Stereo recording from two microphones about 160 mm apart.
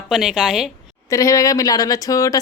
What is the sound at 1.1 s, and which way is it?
Speech, 20° left (ahead or behind).